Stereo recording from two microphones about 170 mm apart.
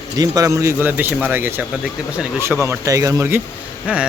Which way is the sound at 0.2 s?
20° right (ahead or behind).